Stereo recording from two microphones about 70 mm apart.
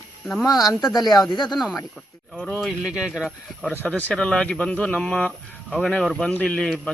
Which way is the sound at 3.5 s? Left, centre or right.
Centre.